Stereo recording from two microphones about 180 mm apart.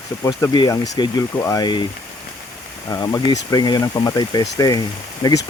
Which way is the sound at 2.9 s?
20° left (ahead or behind).